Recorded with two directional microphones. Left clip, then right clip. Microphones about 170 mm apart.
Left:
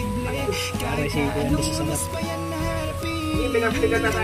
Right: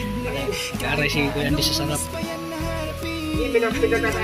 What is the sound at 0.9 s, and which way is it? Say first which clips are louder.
Speech: right 5 dB; centre (ahead or behind).